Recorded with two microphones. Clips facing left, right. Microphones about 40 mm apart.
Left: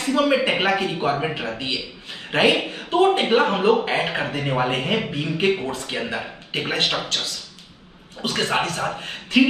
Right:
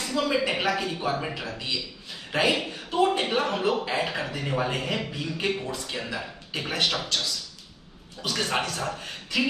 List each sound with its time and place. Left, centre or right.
0.0 s a man's voice: left